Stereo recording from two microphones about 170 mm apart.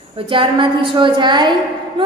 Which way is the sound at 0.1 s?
30° right (ahead or behind).